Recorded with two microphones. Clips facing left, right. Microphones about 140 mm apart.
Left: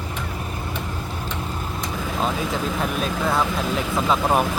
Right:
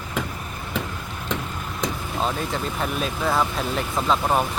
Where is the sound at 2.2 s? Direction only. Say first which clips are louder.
Left 1 dB; centre (ahead or behind).